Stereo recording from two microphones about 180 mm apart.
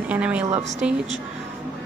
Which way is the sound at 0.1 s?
5° right (ahead or behind).